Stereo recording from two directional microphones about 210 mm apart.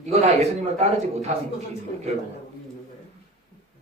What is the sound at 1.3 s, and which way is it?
Speech, 30° right (ahead or behind).